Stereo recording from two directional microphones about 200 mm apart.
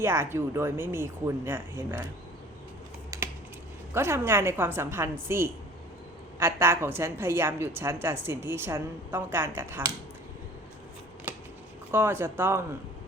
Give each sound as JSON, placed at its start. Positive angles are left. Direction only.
{"t": 0.0, "sound": "a woman's voice", "side_deg": -10}
{"t": 3.1, "sound": "computer keyboard", "side_deg": -15}
{"t": 3.9, "sound": "a woman's voice", "side_deg": -10}
{"t": 11.3, "sound": "a sound", "side_deg": -10}
{"t": 11.9, "sound": "a woman's voice", "side_deg": -10}